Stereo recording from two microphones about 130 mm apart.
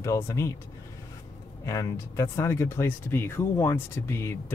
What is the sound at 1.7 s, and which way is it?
Speech, 25° left (ahead or behind).